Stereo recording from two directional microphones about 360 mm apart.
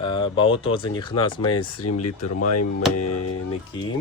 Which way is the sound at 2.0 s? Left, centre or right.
Left.